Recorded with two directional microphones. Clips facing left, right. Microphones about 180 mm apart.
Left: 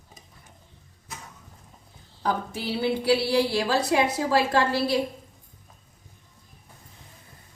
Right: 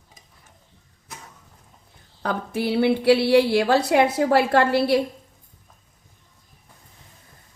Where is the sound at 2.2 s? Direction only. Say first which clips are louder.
Right 3 dB; 60° right (ahead or behind).